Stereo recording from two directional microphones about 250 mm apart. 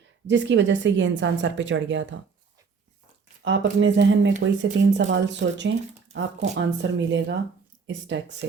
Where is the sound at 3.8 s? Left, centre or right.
Right.